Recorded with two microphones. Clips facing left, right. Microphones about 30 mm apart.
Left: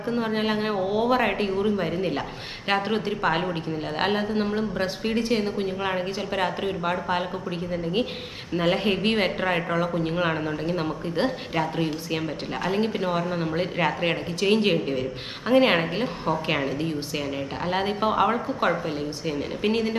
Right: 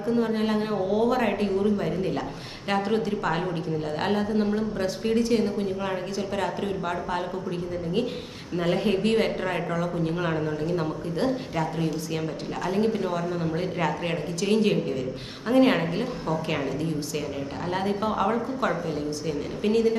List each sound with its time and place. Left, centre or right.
0.0 s speech: left
8.5 s speech: left